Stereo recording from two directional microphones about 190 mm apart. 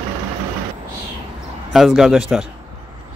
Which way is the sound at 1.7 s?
Centre (ahead or behind).